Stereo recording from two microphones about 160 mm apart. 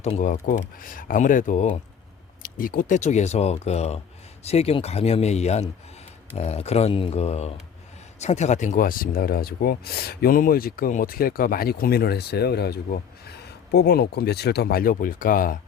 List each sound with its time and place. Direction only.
0.0 s speech: 50° left (ahead or behind)